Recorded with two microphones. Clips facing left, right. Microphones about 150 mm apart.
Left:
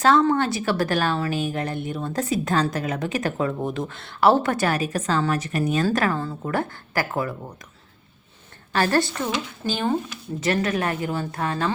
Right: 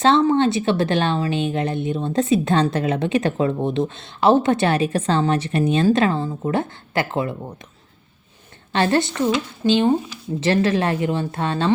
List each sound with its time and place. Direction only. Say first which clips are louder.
0.0 s a woman's voice: right 3 dB; 25° right (ahead or behind)
8.7 s a woman's voice: right 2 dB; 25° right (ahead or behind)